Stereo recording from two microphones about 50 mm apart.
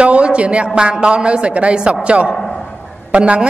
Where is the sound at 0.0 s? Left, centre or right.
Right.